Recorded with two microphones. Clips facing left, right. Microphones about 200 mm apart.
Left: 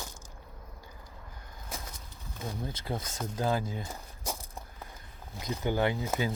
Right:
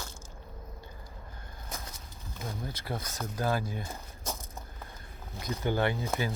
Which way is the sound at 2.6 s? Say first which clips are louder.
Left 1 dB; 15° left (ahead or behind).